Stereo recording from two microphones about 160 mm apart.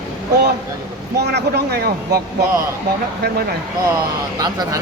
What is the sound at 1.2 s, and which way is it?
Speech, 85° right.